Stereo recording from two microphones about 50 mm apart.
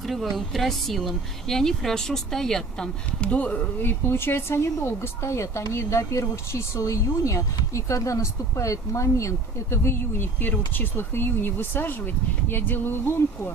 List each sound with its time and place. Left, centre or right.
0.0 s speech: centre
3.2 s speech: left
3.8 s speech: left
10.4 s speech: left